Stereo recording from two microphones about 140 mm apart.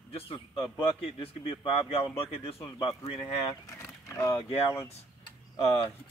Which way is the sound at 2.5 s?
25° left (ahead or behind).